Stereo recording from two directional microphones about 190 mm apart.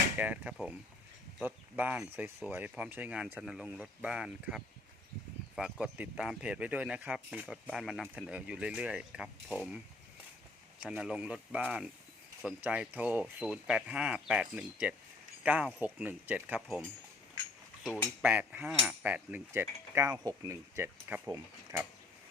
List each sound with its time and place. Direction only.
0.2 s speech: 5° right (ahead or behind)
5.8 s speech: 5° right (ahead or behind)
17.8 s speech: 10° left (ahead or behind)
18.2 s speech: 10° right (ahead or behind)